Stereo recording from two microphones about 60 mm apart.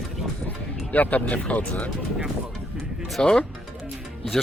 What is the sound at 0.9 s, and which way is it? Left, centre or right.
Speech, left.